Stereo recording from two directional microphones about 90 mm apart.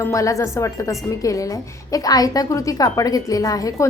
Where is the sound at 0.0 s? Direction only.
35° left (ahead or behind).